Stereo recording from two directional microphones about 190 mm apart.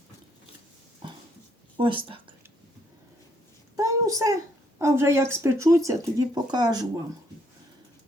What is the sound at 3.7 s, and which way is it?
A child's voice, 15° right (ahead or behind).